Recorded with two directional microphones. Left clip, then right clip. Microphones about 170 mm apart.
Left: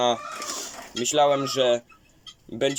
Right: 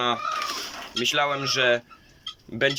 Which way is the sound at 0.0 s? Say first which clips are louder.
Even; 30° left (ahead or behind).